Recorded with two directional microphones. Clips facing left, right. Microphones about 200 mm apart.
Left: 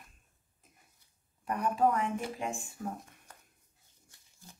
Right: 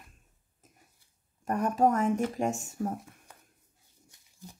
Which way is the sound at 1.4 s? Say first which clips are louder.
Right 3 dB; 45° right (ahead or behind).